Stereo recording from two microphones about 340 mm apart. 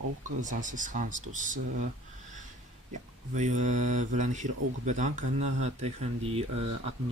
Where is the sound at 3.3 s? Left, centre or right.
Right.